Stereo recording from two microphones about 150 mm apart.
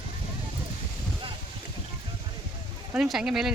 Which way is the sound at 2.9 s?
5° right (ahead or behind).